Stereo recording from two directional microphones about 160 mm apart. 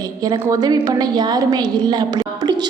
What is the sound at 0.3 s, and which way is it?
A woman's voice, 25° right (ahead or behind).